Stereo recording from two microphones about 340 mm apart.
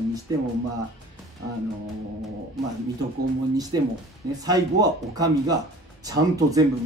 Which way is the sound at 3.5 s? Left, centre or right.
Centre.